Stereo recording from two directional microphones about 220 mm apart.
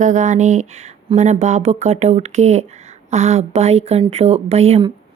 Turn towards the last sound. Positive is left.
turn(degrees=-30)  # may be behind; listen again after turning